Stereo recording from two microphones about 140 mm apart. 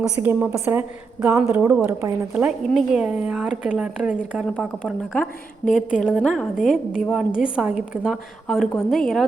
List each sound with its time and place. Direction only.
0.2 s a woman's voice: 15° right (ahead or behind)
2.3 s a woman's voice: 5° right (ahead or behind)
4.4 s a woman's voice: 5° left (ahead or behind)